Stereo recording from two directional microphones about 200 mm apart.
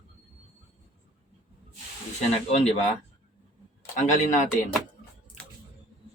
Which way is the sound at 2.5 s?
35° left (ahead or behind).